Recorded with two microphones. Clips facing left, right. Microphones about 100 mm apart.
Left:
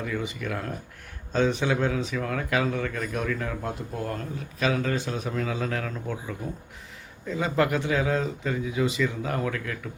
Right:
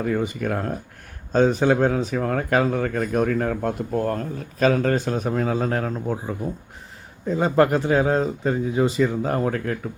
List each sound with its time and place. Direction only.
0.0 s speech: 45° right (ahead or behind)